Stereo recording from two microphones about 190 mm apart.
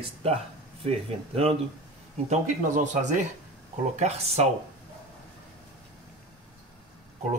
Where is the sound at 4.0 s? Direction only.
35° right (ahead or behind).